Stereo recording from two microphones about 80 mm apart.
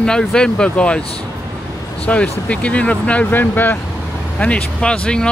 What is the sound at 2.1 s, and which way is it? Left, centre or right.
Speech, centre.